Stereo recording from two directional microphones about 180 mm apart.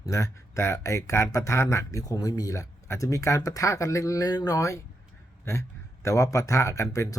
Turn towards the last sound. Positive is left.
turn(degrees=20)  # may be behind; listen again after turning